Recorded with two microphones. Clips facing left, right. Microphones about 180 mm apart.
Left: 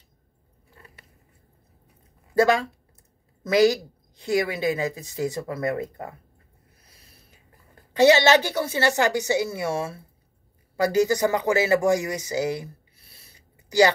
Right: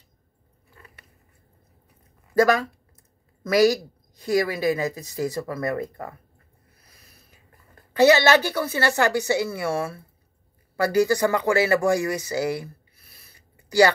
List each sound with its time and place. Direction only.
2.3 s a woman's voice: 25° left (ahead or behind)
7.9 s a woman's voice: 25° left (ahead or behind)